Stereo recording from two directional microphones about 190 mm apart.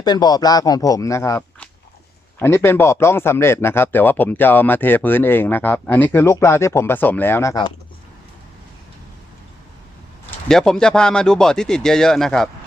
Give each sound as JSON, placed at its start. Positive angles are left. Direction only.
{"t": 0.0, "sound": "speech", "side_deg": 20}
{"t": 10.5, "sound": "speech", "side_deg": 5}